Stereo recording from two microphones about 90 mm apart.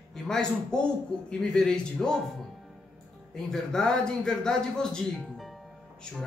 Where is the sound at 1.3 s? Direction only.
5° left (ahead or behind).